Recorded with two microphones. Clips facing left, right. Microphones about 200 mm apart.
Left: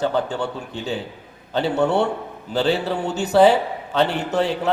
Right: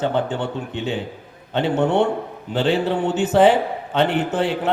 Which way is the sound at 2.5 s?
40° left (ahead or behind).